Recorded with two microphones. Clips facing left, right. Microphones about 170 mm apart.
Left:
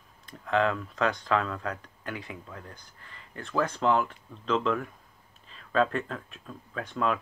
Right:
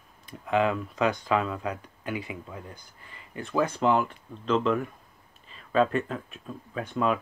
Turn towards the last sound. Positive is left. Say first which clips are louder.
# right 2 dB
turn(degrees=-5)  # may be behind; listen again after turning